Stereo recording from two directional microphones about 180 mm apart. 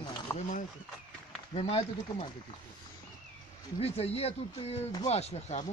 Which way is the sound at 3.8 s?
35° left (ahead or behind).